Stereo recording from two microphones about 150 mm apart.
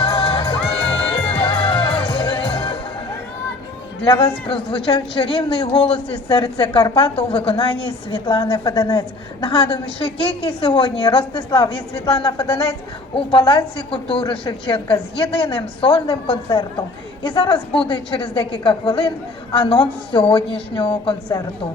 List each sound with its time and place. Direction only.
0.0 s music: 35° left (ahead or behind)
4.0 s a man's voice: 30° left (ahead or behind)